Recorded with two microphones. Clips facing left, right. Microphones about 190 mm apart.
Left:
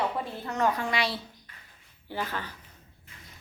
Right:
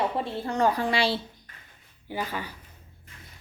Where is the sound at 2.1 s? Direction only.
10° right (ahead or behind).